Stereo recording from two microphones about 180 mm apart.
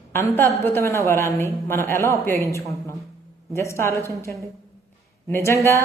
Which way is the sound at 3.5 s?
15° left (ahead or behind).